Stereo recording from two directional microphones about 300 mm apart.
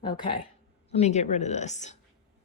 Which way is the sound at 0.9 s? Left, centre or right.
Left.